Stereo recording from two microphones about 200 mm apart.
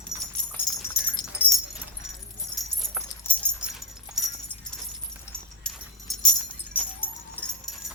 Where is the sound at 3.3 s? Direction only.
10° left (ahead or behind).